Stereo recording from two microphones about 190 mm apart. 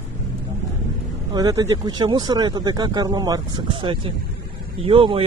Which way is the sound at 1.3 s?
20° right (ahead or behind).